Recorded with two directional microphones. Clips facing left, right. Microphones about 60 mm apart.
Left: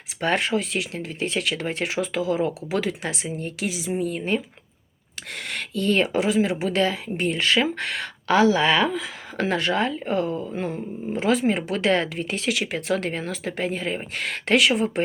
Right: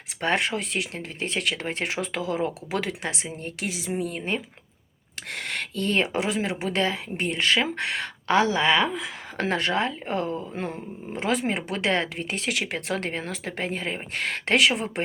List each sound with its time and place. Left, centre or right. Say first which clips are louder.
0.2 s speech: left 2 dB; right
6.0 s speech: left 4 dB; right
9.0 s speech: left 2 dB; right
11.2 s speech: left 4 dB; right